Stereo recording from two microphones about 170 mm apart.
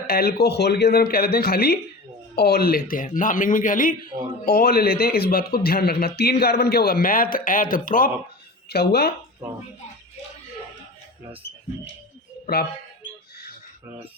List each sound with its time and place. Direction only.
0.1 s a man's voice: 65° left (ahead or behind)
8.7 s speech: 70° left (ahead or behind)